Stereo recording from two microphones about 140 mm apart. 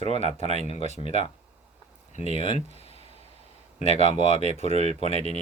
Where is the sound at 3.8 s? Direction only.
50° left (ahead or behind).